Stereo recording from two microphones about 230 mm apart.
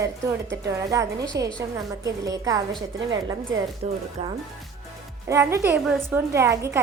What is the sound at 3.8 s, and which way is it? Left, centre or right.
Speech, right.